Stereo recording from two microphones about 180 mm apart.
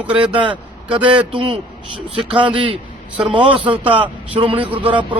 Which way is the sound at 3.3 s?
25° right (ahead or behind).